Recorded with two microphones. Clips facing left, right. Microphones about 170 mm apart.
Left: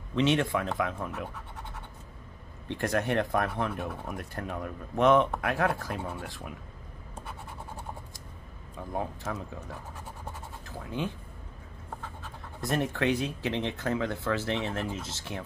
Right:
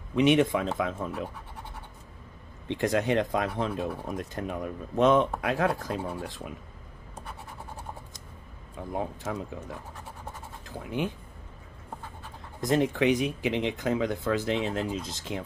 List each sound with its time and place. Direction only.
0.1 s speech: 15° right (ahead or behind)
2.7 s speech: 15° right (ahead or behind)
9.2 s speech: 15° right (ahead or behind)
12.2 s speech: 15° right (ahead or behind)